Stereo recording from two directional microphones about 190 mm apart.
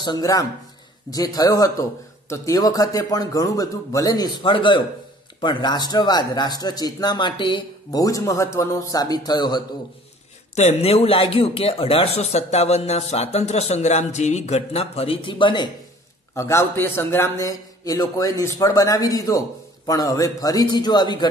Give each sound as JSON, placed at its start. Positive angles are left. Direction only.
{"t": 0.0, "sound": "a man's voice", "side_deg": 20}
{"t": 10.5, "sound": "speech", "side_deg": 35}
{"t": 16.3, "sound": "a man's voice", "side_deg": 15}